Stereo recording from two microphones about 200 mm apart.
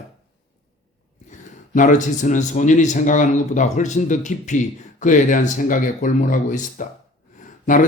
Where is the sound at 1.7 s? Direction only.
40° left (ahead or behind).